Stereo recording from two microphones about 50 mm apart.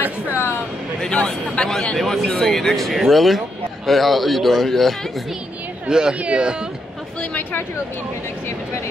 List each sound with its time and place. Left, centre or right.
0.3 s speech: left
1.1 s a man's voice: left; by 4.9 s centre
5.9 s speech: centre